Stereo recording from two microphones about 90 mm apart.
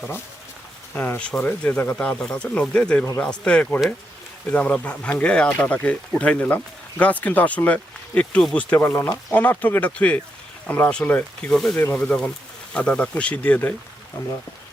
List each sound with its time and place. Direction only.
0.9 s speech: 20° left (ahead or behind)